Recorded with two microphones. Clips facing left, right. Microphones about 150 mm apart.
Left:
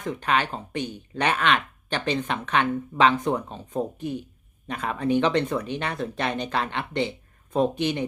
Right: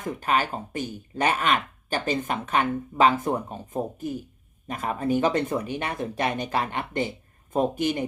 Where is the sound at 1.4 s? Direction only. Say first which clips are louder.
Left 1 dB; 45° right (ahead or behind).